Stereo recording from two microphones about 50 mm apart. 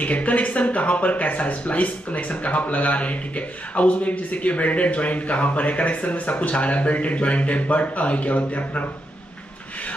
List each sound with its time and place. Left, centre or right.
0.0 s speech: left